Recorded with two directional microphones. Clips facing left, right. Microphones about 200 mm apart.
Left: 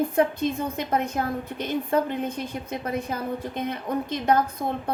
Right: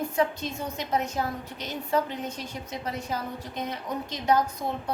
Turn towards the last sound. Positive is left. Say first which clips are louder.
# left 2 dB
turn(degrees=55)  # may be behind; listen again after turning